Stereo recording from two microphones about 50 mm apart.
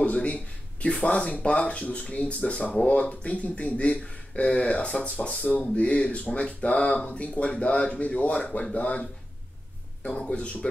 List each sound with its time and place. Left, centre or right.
0.0 s speech: left
10.0 s speech: centre